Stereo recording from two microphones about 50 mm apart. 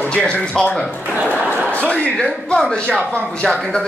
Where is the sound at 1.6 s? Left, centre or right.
Left.